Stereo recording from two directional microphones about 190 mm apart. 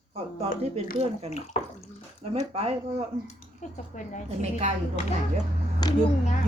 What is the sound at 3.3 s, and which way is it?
Speech, 40° left (ahead or behind).